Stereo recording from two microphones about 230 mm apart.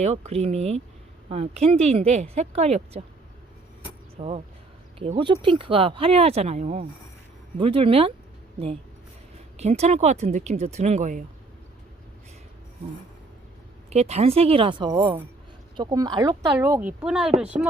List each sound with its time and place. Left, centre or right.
0.3 s speech: right
4.2 s speech: right
13.9 s speech: right; by 17.7 s centre